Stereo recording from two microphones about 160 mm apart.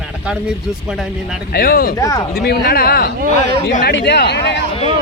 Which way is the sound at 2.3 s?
75° left (ahead or behind).